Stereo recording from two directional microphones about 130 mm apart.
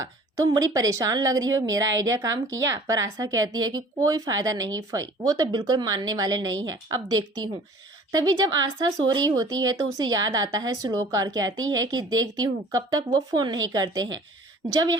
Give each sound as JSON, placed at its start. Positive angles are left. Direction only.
{"t": 0.0, "sound": "speech", "side_deg": -30}
{"t": 8.1, "sound": "speech", "side_deg": -30}